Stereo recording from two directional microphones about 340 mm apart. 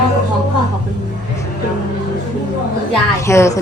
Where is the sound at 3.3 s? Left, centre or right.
Centre.